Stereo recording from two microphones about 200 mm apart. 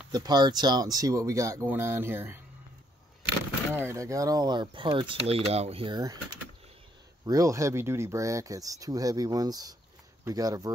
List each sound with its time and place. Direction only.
0.1 s speech: 20° right (ahead or behind)
3.7 s speech: 15° right (ahead or behind)
7.2 s speech: 15° right (ahead or behind)